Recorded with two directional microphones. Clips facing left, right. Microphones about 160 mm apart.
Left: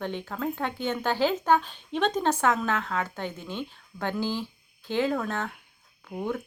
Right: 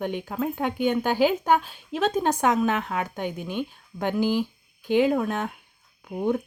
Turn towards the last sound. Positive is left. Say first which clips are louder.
# right 6 dB
turn(degrees=-20)  # may be behind; listen again after turning